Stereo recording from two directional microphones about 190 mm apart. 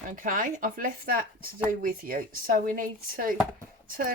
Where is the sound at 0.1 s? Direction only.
45° right (ahead or behind).